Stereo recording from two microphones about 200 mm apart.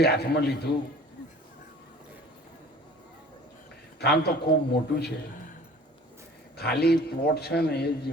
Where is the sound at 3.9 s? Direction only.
55° left (ahead or behind).